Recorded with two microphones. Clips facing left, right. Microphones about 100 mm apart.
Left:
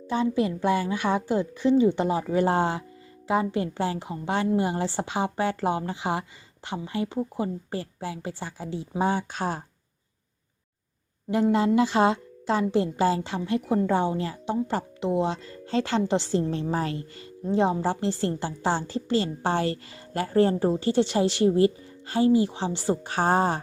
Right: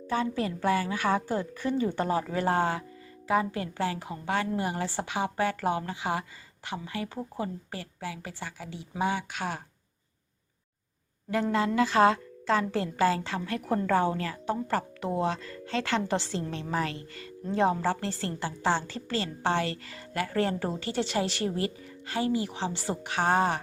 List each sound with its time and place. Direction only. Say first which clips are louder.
0.1 s a woman's voice: left 4 dB; 20° left (ahead or behind)
11.5 s a woman's voice: left 1 dB; 30° left (ahead or behind)
13.6 s a woman's voice: left 4 dB; 10° left (ahead or behind)
13.8 s a woman's voice: left 2 dB; 20° left (ahead or behind)